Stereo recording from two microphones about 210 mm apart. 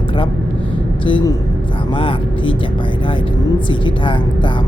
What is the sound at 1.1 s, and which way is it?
Speech, 25° left (ahead or behind).